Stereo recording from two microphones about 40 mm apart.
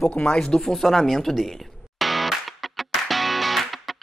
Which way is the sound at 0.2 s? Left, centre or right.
Centre.